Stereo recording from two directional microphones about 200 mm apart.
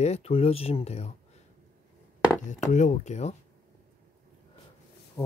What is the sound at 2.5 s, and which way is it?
Speech, 35° left (ahead or behind).